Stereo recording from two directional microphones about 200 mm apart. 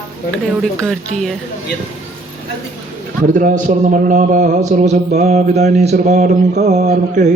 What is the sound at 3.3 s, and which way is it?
A man's voice, 40° right (ahead or behind).